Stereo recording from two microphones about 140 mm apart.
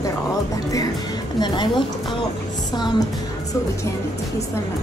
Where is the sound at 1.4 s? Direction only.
35° left (ahead or behind).